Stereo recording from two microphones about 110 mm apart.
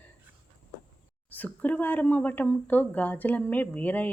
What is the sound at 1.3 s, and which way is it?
Speech, 15° left (ahead or behind).